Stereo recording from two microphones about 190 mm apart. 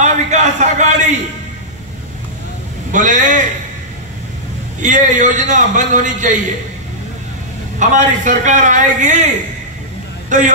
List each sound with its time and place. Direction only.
0.0 s a sound: 40° right (ahead or behind)
2.9 s a man's voice: 40° right (ahead or behind)
4.8 s a man's voice: 40° right (ahead or behind)
7.9 s a man's voice: 40° right (ahead or behind)
10.3 s a man's voice: 40° right (ahead or behind)